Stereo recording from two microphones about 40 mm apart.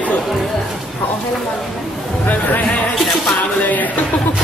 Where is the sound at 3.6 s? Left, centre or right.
Left.